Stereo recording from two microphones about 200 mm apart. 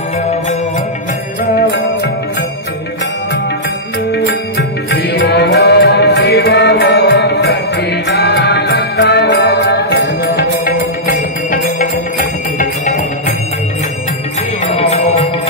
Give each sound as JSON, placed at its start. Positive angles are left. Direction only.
{"t": 4.1, "sound": "music", "side_deg": 55}